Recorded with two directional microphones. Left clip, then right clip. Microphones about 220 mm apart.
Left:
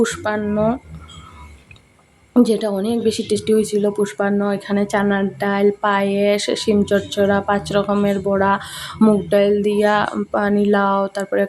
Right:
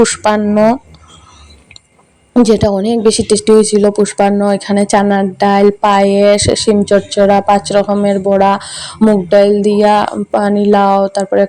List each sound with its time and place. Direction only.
0.0 s speech: 25° right (ahead or behind)
2.3 s speech: 25° right (ahead or behind)